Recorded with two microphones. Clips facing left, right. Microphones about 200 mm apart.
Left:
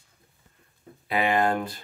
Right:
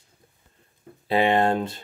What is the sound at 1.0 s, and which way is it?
Speech, 30° right (ahead or behind).